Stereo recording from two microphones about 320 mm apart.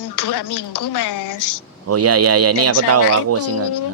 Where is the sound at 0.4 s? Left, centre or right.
Left.